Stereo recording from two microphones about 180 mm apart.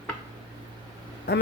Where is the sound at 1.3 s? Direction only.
65° left (ahead or behind).